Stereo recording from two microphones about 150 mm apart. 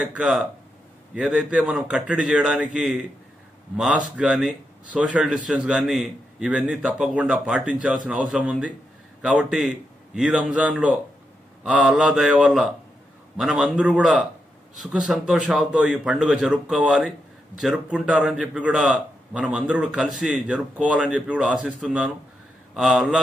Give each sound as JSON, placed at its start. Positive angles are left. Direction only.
{"t": 0.0, "sound": "a man's voice", "side_deg": -5}